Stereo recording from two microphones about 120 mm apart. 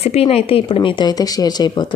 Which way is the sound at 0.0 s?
60° left (ahead or behind).